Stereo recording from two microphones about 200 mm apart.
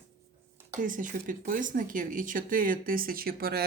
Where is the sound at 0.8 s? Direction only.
40° right (ahead or behind).